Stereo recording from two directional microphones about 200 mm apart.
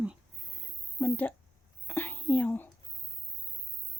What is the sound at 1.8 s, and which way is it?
Whispering, 10° left (ahead or behind).